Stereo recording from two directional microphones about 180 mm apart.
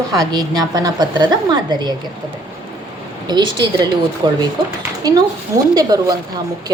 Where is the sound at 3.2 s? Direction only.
25° right (ahead or behind).